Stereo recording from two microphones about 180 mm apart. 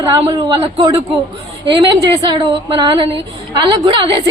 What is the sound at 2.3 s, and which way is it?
Speech, 25° right (ahead or behind).